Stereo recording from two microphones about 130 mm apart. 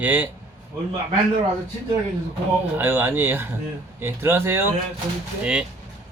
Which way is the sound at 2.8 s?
15° right (ahead or behind).